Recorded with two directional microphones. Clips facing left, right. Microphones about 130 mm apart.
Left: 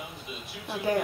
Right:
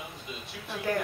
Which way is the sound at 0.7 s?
15° left (ahead or behind).